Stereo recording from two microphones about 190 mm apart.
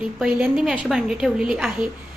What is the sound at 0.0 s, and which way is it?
A woman's voice, 5° right (ahead or behind).